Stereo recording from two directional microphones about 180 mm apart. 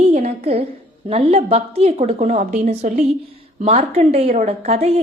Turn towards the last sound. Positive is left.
turn(degrees=-35)  # may be behind; listen again after turning